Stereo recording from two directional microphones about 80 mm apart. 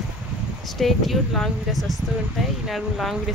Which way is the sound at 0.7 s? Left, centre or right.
Centre.